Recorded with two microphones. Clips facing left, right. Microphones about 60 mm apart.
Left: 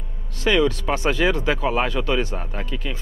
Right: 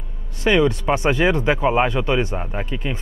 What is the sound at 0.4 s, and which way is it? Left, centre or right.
Speech, right.